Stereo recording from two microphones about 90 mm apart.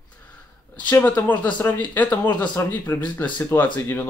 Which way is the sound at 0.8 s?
20° left (ahead or behind).